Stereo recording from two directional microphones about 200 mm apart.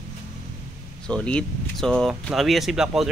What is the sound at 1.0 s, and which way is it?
Speech, 5° left (ahead or behind).